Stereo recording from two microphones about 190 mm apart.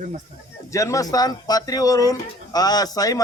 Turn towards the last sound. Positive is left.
turn(degrees=20)  # may be behind; listen again after turning